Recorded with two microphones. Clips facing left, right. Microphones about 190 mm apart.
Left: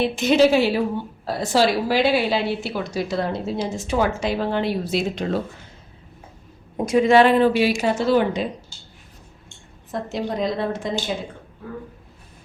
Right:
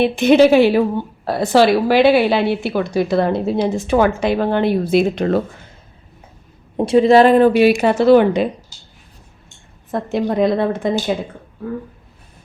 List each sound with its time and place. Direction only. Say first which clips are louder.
0.0 s a woman's voice: right 6 dB; 60° right (ahead or behind)
6.7 s a woman's voice: right 5 dB; 30° right (ahead or behind); by 8.4 s 65° right (ahead or behind)
9.9 s a woman's voice: right 7 dB; 60° right (ahead or behind)